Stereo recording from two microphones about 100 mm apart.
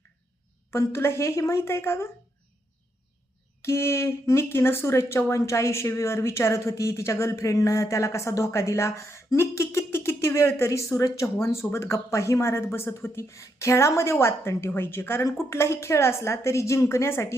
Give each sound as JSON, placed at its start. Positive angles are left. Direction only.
{"t": 0.7, "sound": "speech", "side_deg": 25}
{"t": 3.6, "sound": "speech", "side_deg": 30}